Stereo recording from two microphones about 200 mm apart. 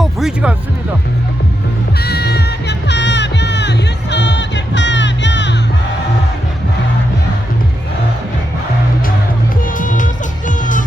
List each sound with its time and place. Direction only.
0.0 s music: centre (ahead or behind)
2.0 s music: 55° left (ahead or behind)
9.7 s music: 40° left (ahead or behind)